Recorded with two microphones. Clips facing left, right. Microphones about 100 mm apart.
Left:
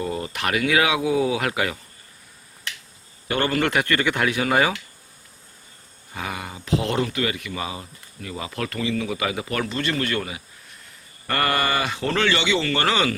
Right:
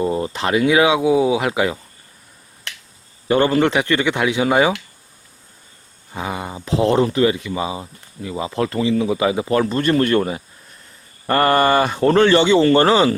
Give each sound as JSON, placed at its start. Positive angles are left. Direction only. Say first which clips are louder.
{"t": 0.0, "sound": "speech", "louder": "right 6 dB", "side_deg": -25}
{"t": 3.2, "sound": "speech", "louder": "right 7 dB", "side_deg": -25}
{"t": 6.1, "sound": "speech", "louder": "right 5 dB", "side_deg": -25}
{"t": 9.6, "sound": "a man's voice", "louder": "right 8 dB", "side_deg": -45}